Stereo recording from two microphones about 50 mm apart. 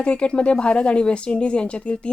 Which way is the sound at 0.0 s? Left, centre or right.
Left.